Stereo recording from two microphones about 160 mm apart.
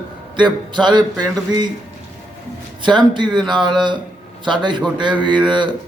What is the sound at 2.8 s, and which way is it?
A man's voice, 30° right (ahead or behind).